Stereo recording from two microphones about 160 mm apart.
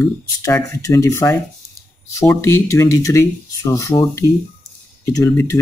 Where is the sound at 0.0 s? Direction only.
15° left (ahead or behind).